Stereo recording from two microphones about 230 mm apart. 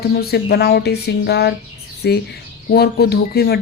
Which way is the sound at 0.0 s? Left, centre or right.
Left.